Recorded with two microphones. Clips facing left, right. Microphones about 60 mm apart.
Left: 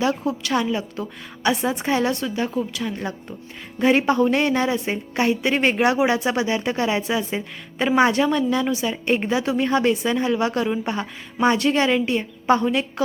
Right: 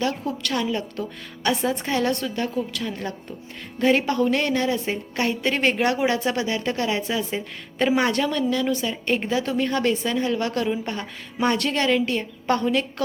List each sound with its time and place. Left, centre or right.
0.0 s a woman's voice: centre
2.0 s a woman's voice: centre